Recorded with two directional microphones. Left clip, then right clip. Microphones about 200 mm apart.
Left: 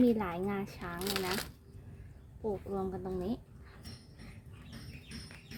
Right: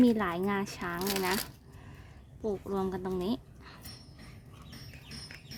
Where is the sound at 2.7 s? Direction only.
50° right (ahead or behind).